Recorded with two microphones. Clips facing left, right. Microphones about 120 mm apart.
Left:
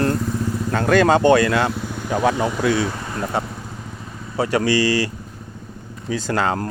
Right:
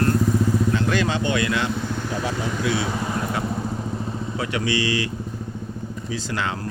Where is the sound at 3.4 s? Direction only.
35° left (ahead or behind).